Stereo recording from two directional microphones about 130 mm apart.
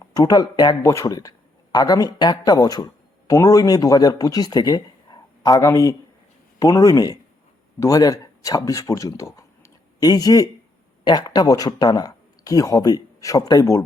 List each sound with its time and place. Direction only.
0.1 s speech: 30° left (ahead or behind)